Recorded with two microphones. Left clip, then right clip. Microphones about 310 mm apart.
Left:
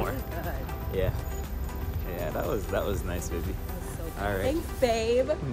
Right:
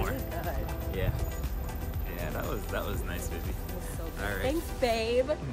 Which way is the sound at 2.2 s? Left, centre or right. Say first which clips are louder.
Left 5 dB; centre.